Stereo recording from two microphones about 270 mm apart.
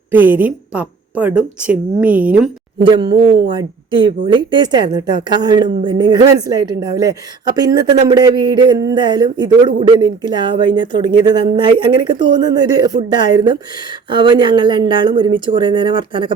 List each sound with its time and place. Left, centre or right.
0.1 s a woman's voice: centre
2.8 s speech: centre